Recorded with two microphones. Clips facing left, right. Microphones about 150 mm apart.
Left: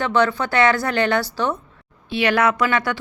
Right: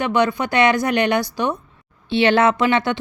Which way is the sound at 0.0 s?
15° right (ahead or behind).